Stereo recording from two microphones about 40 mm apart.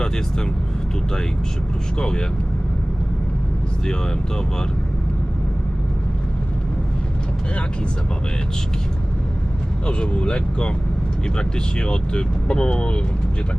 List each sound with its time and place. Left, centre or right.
0.0 s speech: centre
2.0 s speech: centre
9.8 s speech: left